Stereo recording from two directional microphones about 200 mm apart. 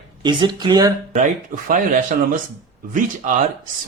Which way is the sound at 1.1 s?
40° right (ahead or behind).